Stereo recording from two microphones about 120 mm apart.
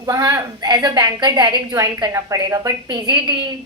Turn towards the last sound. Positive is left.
turn(degrees=-40)  # may be behind; listen again after turning